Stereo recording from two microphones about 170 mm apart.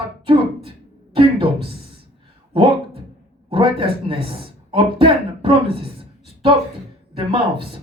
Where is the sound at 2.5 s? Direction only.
30° right (ahead or behind).